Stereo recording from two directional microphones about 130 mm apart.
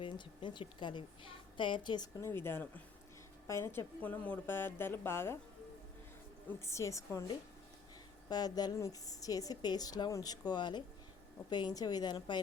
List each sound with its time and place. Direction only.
0.0 s a woman's voice: 40° left (ahead or behind)
2.2 s a woman's voice: 20° left (ahead or behind)
6.6 s a woman's voice: 20° left (ahead or behind)
8.3 s a woman's voice: 30° left (ahead or behind)